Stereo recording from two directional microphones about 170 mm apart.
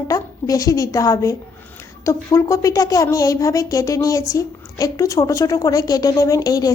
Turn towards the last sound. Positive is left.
turn(degrees=20)  # may be behind; listen again after turning